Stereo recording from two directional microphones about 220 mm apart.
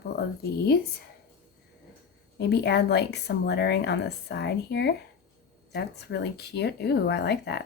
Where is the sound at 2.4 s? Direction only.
50° left (ahead or behind).